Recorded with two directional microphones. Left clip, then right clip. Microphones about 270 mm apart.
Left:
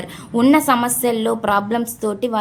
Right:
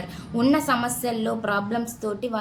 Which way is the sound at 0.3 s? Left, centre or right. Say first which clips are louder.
Left 7 dB; left.